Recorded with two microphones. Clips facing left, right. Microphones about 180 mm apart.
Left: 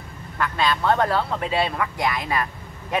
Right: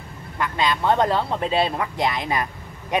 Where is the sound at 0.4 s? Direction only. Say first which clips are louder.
Even; 20° right (ahead or behind).